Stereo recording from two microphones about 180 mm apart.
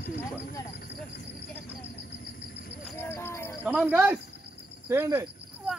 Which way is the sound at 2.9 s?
15° left (ahead or behind).